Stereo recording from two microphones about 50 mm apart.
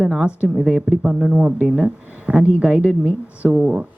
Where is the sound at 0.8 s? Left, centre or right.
Centre.